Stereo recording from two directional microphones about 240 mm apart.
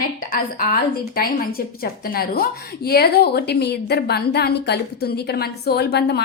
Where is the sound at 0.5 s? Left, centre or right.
Left.